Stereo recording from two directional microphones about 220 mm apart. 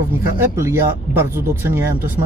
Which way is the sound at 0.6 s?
10° right (ahead or behind).